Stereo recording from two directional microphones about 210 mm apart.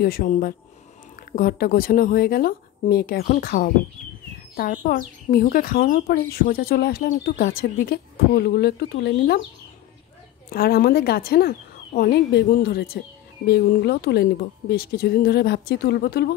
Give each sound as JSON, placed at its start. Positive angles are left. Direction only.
{"t": 0.0, "sound": "speech", "side_deg": 45}
{"t": 10.5, "sound": "speech", "side_deg": 45}